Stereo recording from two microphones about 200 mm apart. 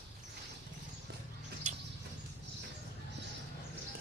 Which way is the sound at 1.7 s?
40° right (ahead or behind).